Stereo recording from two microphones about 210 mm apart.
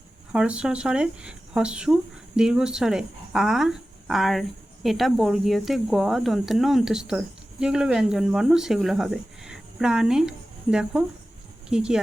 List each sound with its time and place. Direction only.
0.3 s speech: 5° right (ahead or behind)